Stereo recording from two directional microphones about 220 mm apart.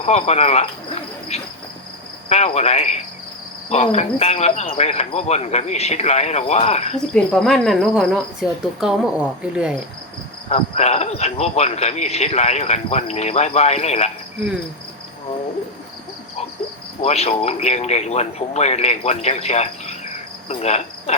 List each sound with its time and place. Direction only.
0.0 s speech: 30° left (ahead or behind)
7.1 s speech: centre (ahead or behind)
10.5 s speech: 30° left (ahead or behind)
17.0 s speech: 30° left (ahead or behind)
20.5 s cricket: 30° left (ahead or behind)